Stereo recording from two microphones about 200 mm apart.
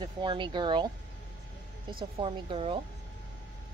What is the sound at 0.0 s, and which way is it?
Speech, 25° right (ahead or behind).